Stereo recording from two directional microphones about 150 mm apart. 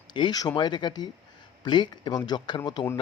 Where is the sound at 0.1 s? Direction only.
30° left (ahead or behind).